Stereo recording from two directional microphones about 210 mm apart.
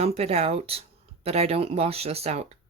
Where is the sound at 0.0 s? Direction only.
30° right (ahead or behind).